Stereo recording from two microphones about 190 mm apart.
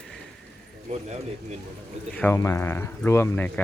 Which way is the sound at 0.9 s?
35° right (ahead or behind).